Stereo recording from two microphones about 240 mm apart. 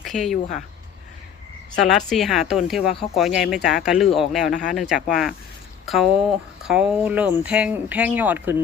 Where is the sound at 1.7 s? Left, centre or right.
Centre.